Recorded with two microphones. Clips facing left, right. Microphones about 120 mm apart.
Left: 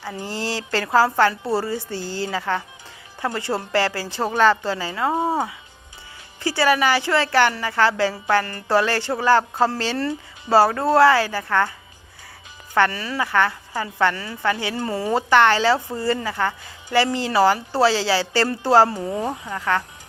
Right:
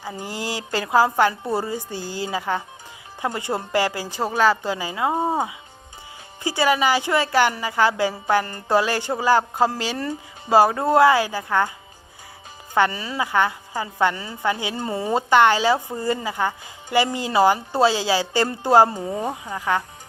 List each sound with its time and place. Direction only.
0.0 s a woman's voice: 15° right (ahead or behind)
12.7 s a woman's voice: 15° right (ahead or behind)